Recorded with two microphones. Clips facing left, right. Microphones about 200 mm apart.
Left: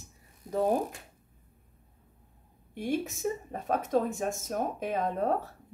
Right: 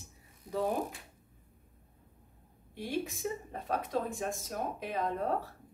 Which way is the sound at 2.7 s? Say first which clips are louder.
Left 4 dB; 45° left (ahead or behind).